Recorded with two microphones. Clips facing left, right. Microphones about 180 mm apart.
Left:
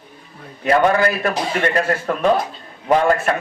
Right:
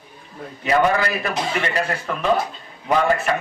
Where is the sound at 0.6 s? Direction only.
55° left (ahead or behind).